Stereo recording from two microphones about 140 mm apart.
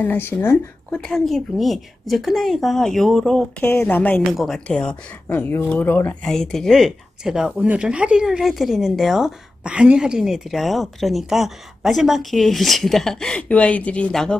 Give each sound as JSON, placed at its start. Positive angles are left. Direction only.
{"t": 0.0, "sound": "speech", "side_deg": 15}
{"t": 1.0, "sound": "speech", "side_deg": 0}
{"t": 3.6, "sound": "speech", "side_deg": 15}
{"t": 6.2, "sound": "speech", "side_deg": 0}